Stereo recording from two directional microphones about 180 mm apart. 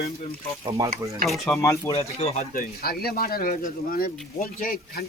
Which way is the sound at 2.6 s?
55° left (ahead or behind).